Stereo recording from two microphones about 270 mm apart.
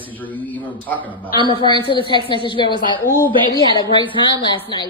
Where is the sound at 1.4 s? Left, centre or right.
Centre.